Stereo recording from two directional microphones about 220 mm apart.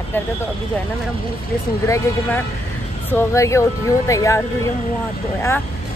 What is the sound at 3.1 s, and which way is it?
Speech, 10° left (ahead or behind).